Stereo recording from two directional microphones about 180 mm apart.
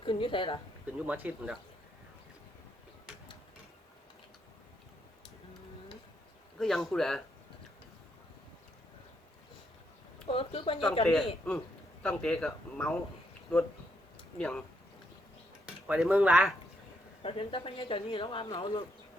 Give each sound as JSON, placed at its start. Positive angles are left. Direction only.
{"t": 0.0, "sound": "a woman's voice", "side_deg": 30}
{"t": 0.9, "sound": "speech", "side_deg": -10}
{"t": 6.6, "sound": "speech", "side_deg": 0}
{"t": 10.2, "sound": "speech", "side_deg": 30}
{"t": 11.0, "sound": "speech", "side_deg": 5}
{"t": 14.3, "sound": "speech", "side_deg": 5}
{"t": 15.6, "sound": "speech", "side_deg": -5}
{"t": 17.2, "sound": "speech", "side_deg": 30}